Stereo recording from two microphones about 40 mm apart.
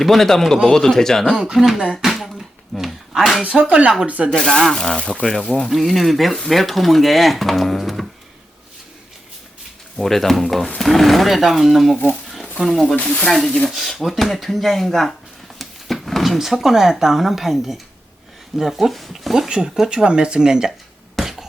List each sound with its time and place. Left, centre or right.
0.0 s speech: centre
1.5 s speech: centre
2.0 s a sound: centre
3.4 s speech: right
4.3 s speech: centre
5.6 s speech: centre
10.0 s speech: centre
12.3 s a sound: centre
13.0 s speech: left
13.3 s speech: centre
19.5 s speech: right
21.2 s a sound: centre